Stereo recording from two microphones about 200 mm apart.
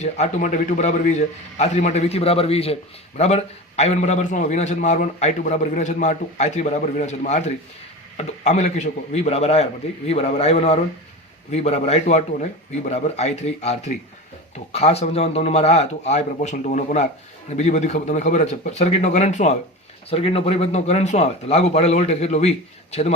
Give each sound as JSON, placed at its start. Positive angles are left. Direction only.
{"t": 0.0, "sound": "a man's voice", "side_deg": 35}